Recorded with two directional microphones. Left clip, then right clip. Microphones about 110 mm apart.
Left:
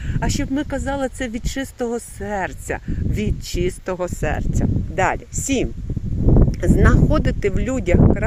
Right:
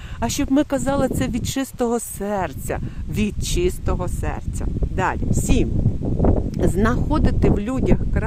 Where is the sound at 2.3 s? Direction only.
20° right (ahead or behind).